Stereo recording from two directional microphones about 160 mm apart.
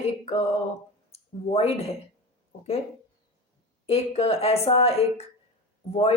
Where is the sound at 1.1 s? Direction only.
40° left (ahead or behind).